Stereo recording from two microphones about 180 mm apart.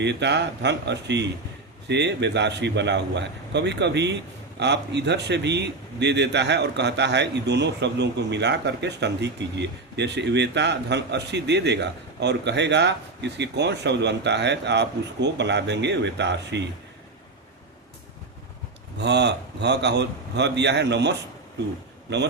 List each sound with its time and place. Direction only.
0.0 s a man's voice: 75° right (ahead or behind)
18.9 s a man's voice: 70° right (ahead or behind)